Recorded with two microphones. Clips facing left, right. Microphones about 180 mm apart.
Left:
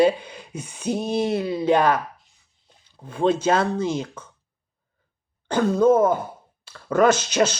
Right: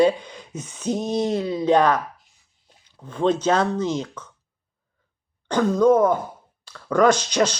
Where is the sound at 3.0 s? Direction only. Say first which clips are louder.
Even; 10° left (ahead or behind).